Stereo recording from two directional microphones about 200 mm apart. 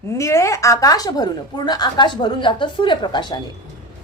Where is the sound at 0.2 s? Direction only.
15° left (ahead or behind).